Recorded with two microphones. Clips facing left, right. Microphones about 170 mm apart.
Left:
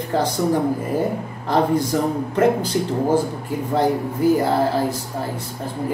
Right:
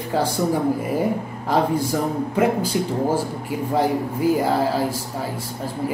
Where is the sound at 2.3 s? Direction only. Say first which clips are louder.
Left 2 dB; 10° right (ahead or behind).